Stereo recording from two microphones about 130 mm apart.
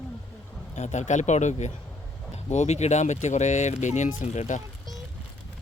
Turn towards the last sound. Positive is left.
turn(degrees=65)  # may be behind; listen again after turning